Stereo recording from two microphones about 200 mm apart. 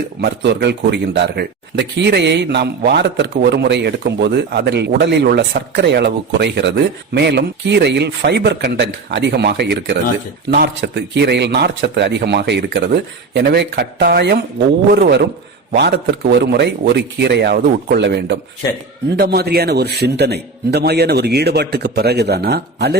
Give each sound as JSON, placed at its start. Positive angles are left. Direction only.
{"t": 0.2, "sound": "a man's voice", "side_deg": -55}